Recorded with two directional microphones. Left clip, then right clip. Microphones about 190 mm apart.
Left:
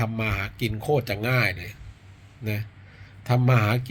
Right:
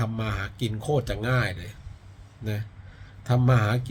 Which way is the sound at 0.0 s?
15° right (ahead or behind).